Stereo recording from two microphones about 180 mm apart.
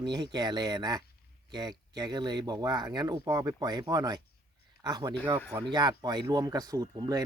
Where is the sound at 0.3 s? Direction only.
25° right (ahead or behind).